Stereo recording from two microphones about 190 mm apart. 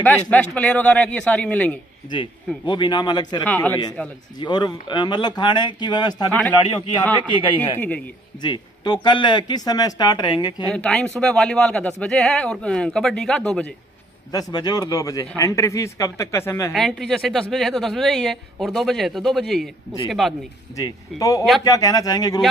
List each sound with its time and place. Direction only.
0.0 s speech: 5° left (ahead or behind)
2.0 s speech: 25° left (ahead or behind)
3.4 s speech: 10° left (ahead or behind)
4.4 s speech: 25° left (ahead or behind)
8.4 s speech: 25° left (ahead or behind)
10.7 s speech: 5° left (ahead or behind)
14.3 s speech: 20° left (ahead or behind)
16.7 s speech: centre (ahead or behind)
20.7 s speech: 20° left (ahead or behind)